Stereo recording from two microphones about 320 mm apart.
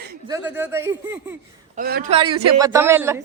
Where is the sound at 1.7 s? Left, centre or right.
Right; by 3.2 s centre.